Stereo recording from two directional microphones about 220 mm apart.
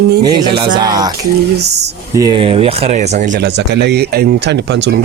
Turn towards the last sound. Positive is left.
turn(degrees=-50)  # may be behind; listen again after turning